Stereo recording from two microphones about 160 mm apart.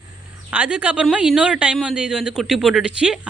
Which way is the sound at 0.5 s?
10° right (ahead or behind).